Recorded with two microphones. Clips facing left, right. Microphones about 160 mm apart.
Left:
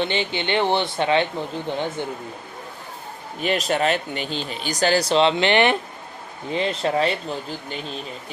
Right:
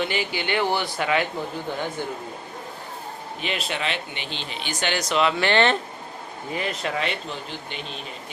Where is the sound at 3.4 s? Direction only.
45° left (ahead or behind); by 5.8 s 15° left (ahead or behind).